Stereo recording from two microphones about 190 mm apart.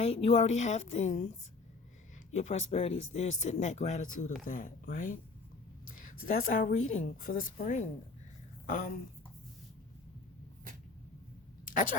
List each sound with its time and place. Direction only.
0.0 s speech: 30° left (ahead or behind)
2.3 s speech: 35° left (ahead or behind)
6.2 s speech: 45° left (ahead or behind)
11.6 s a sound: 45° left (ahead or behind)